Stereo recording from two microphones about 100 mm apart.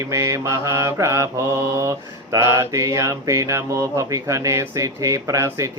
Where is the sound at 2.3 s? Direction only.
30° right (ahead or behind).